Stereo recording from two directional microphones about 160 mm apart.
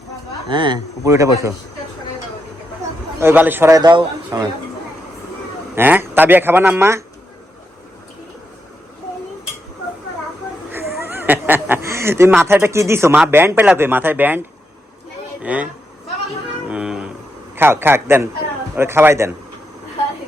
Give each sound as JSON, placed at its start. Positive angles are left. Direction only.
{"t": 0.4, "sound": "speech", "side_deg": -30}
{"t": 3.2, "sound": "a man's voice", "side_deg": -10}
{"t": 5.7, "sound": "a man's voice", "side_deg": -10}
{"t": 10.7, "sound": "speech", "side_deg": -15}
{"t": 15.4, "sound": "a man's voice", "side_deg": -10}
{"t": 16.6, "sound": "a sound", "side_deg": -5}
{"t": 17.5, "sound": "a man's voice", "side_deg": -15}